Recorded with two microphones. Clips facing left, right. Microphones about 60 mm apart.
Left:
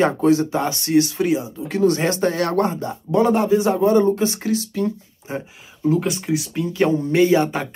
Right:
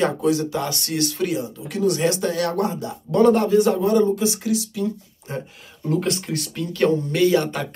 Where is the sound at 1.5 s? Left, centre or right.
Left.